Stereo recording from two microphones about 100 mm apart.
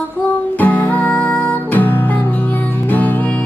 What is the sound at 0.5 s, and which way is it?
Music, 15° left (ahead or behind).